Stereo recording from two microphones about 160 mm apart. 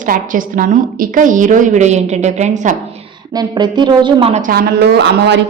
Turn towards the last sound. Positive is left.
turn(degrees=-90)